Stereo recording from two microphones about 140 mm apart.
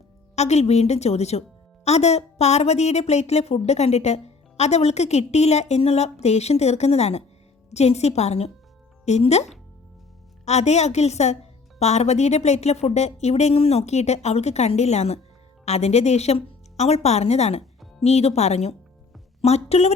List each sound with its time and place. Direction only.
0.3 s a woman's voice: 50° left (ahead or behind)